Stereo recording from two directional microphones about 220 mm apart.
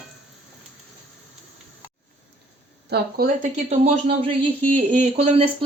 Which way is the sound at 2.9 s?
45° right (ahead or behind).